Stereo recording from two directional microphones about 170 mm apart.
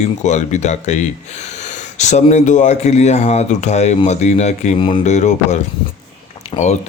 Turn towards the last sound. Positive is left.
turn(degrees=30)  # may be behind; listen again after turning